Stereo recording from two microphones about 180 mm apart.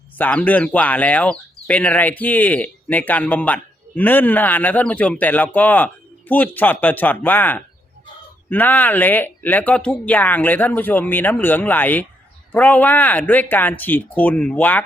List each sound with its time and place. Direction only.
0.2 s speech: 10° left (ahead or behind)